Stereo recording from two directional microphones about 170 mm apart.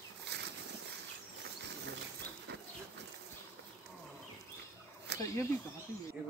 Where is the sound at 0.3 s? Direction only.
80° right.